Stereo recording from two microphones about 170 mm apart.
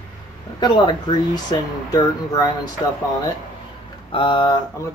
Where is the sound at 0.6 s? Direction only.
25° left (ahead or behind).